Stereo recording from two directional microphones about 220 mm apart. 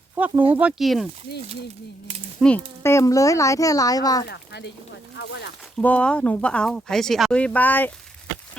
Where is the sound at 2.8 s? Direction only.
15° left (ahead or behind).